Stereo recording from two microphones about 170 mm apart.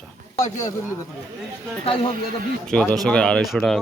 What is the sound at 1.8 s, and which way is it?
Speech, 35° left (ahead or behind).